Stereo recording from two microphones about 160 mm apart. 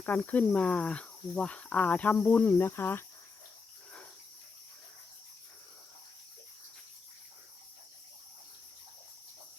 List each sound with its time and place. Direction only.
0.0 s cricket: 10° left (ahead or behind)